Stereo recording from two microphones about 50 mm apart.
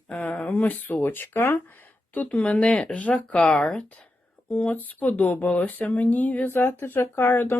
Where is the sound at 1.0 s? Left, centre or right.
Left.